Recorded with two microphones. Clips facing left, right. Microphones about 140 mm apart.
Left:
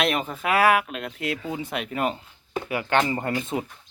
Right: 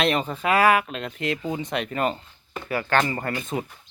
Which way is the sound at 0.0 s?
5° left (ahead or behind).